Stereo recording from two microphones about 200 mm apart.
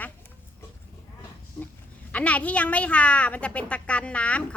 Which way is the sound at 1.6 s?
5° left (ahead or behind).